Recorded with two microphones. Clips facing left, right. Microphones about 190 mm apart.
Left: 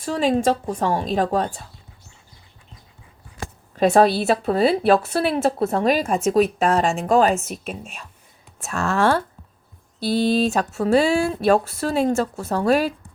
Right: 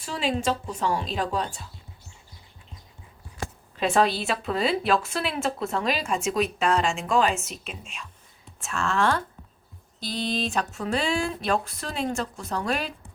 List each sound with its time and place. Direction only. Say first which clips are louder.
0.0 s speech: left 7 dB; 45° left (ahead or behind)
3.8 s a woman's voice: left 7 dB; 40° left (ahead or behind)